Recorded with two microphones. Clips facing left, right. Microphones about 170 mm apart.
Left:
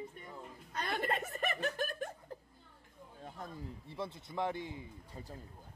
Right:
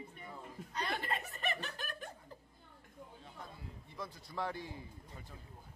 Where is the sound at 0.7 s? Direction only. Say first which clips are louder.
Left 3 dB; 50° left (ahead or behind).